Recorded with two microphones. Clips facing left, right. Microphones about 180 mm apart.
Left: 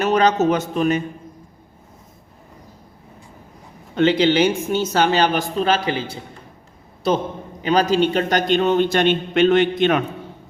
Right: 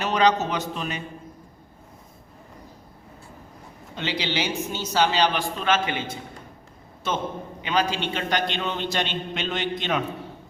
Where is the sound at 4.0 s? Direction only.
55° left (ahead or behind); by 6.2 s 35° left (ahead or behind).